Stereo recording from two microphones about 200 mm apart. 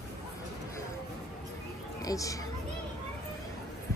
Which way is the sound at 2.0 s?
15° left (ahead or behind).